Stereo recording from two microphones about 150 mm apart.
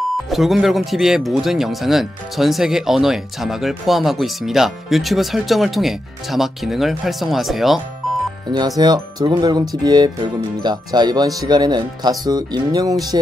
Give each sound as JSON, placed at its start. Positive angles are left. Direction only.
{"t": 0.3, "sound": "speech", "side_deg": 0}
{"t": 8.5, "sound": "speech", "side_deg": -25}